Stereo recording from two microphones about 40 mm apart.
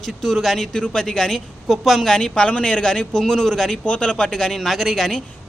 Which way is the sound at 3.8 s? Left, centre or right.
Left.